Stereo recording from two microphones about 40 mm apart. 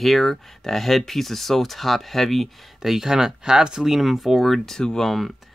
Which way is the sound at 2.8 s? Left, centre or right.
Centre.